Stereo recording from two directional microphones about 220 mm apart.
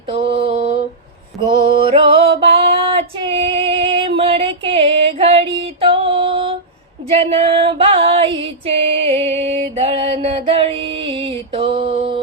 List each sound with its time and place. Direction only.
0.1 s mantra: 25° right (ahead or behind)
1.4 s music: 25° right (ahead or behind)
2.4 s female singing: 25° right (ahead or behind)
7.2 s music: 25° right (ahead or behind)
9.4 s mantra: 25° right (ahead or behind)